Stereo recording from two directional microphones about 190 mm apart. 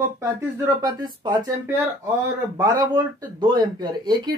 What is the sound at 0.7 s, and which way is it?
Speech, 20° right (ahead or behind).